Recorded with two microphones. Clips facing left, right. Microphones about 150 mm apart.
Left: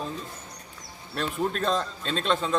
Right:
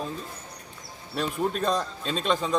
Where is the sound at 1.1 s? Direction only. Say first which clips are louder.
Right 1 dB; centre (ahead or behind).